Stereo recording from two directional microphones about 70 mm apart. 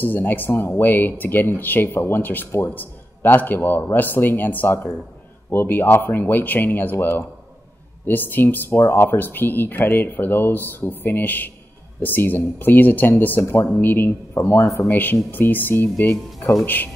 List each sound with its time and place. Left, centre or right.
0.0 s speech: left